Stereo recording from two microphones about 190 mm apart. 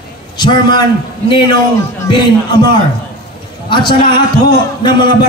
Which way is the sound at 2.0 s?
25° left (ahead or behind).